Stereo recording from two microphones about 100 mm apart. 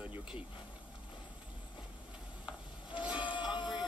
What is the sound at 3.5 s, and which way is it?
Music, 50° left (ahead or behind).